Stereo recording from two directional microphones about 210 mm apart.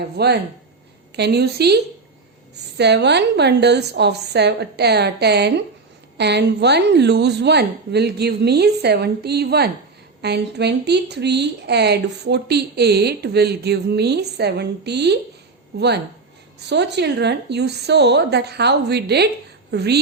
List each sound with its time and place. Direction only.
0.0 s a woman's voice: 50° right (ahead or behind)
16.6 s a woman's voice: 55° right (ahead or behind)